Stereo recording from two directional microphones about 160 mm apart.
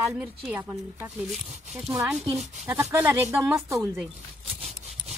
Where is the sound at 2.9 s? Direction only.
15° right (ahead or behind).